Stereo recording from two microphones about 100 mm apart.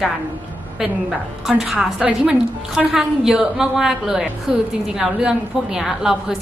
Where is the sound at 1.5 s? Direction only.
5° right (ahead or behind).